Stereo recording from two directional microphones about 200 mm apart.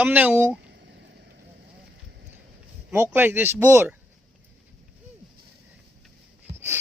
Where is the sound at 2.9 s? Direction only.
15° right (ahead or behind).